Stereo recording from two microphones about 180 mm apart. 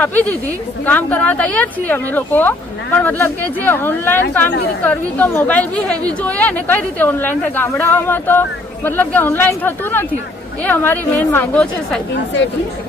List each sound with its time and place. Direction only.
0.0 s speech: 10° left (ahead or behind)
12.1 s speech: 75° left (ahead or behind)